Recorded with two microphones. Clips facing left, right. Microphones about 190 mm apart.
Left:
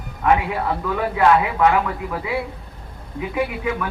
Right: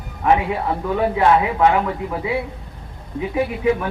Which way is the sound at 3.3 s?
30° right (ahead or behind).